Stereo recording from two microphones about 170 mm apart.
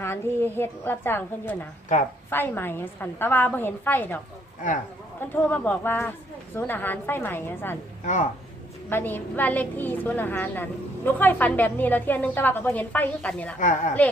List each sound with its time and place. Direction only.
0.0 s a woman's voice: 15° left (ahead or behind)
5.2 s a woman's voice: 10° left (ahead or behind)
8.0 s speech: 45° left (ahead or behind)
8.9 s a woman's voice: 10° left (ahead or behind)
13.6 s speech: 50° left (ahead or behind)